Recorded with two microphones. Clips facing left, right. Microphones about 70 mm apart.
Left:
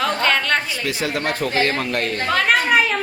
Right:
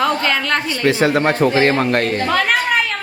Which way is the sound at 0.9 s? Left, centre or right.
Right.